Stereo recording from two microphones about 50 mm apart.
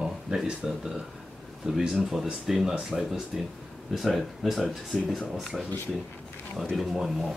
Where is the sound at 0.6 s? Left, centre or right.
Centre.